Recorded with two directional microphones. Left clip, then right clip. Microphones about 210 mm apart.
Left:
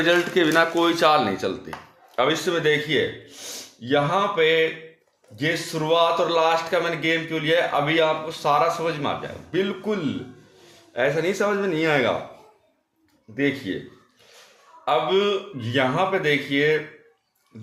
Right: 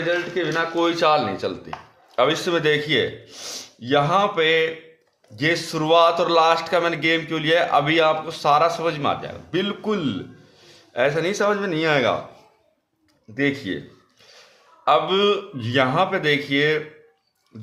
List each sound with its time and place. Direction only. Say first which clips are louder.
0.1 s speech: left 4 dB; 15° left (ahead or behind)
0.8 s speech: even; centre (ahead or behind)
2.1 s a man's voice: right 2 dB; 15° right (ahead or behind)
13.3 s speech: right 1 dB; 15° right (ahead or behind)
14.8 s a man's voice: right 3 dB; 25° right (ahead or behind)